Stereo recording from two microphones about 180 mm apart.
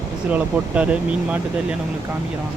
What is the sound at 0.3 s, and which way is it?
Speech, 5° right (ahead or behind).